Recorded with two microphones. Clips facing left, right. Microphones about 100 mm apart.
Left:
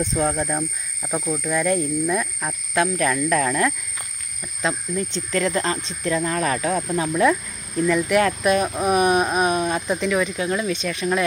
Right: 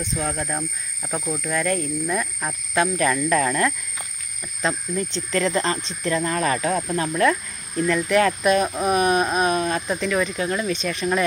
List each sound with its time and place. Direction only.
0.2 s speech: 30° left (ahead or behind)
1.0 s speech: centre (ahead or behind)